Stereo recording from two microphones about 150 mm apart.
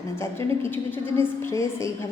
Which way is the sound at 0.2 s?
15° left (ahead or behind).